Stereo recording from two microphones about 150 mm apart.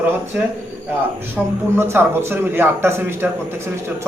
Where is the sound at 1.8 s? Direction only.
15° right (ahead or behind).